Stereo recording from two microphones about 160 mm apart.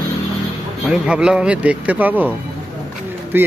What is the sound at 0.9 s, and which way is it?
Speech, 5° right (ahead or behind).